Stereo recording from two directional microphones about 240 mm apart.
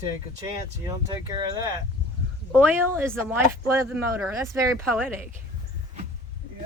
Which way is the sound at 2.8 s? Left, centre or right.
Centre.